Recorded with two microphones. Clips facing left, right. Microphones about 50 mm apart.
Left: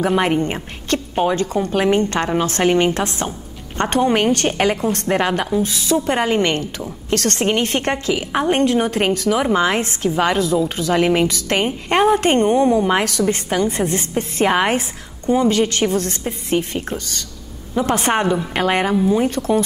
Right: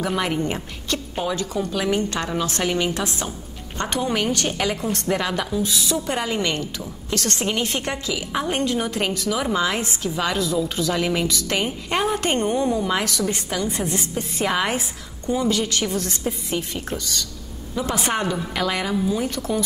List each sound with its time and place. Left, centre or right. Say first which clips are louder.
0.0 s a woman's voice: left 6 dB; left